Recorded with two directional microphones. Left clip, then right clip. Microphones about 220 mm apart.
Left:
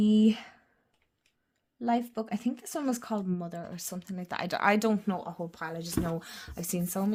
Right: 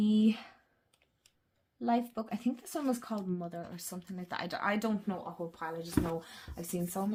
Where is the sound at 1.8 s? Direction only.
35° left (ahead or behind).